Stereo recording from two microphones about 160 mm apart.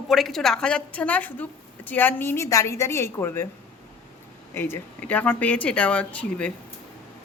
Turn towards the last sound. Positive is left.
turn(degrees=5)  # may be behind; listen again after turning